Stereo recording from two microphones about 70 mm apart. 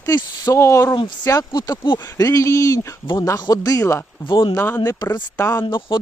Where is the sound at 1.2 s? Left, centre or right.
Left.